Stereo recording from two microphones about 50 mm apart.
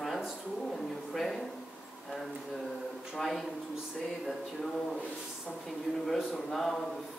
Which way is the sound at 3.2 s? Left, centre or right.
Centre.